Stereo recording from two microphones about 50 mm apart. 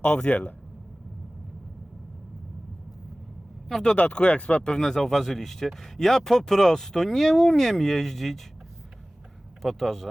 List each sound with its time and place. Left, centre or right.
0.0 s speech: left
3.9 s speech: left; by 8.4 s centre
9.6 s speech: centre